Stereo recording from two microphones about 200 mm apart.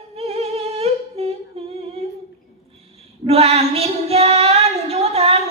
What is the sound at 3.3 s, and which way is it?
Child singing, 30° right (ahead or behind).